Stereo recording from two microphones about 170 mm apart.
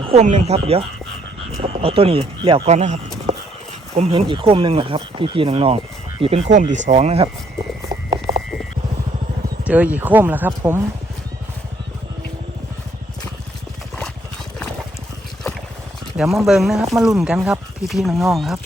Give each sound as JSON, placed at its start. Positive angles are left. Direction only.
{"t": 0.0, "sound": "speech", "side_deg": -40}
{"t": 6.5, "sound": "speech", "side_deg": -45}
{"t": 7.9, "sound": "a sound", "side_deg": -25}
{"t": 9.6, "sound": "speech", "side_deg": -10}
{"t": 16.1, "sound": "speech", "side_deg": 0}